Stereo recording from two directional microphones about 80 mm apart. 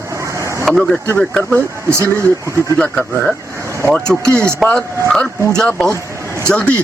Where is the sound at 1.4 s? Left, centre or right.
Centre.